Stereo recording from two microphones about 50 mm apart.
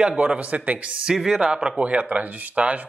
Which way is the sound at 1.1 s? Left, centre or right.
Centre.